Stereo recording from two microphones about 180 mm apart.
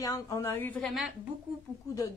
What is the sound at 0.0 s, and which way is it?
A woman's voice, 20° left (ahead or behind).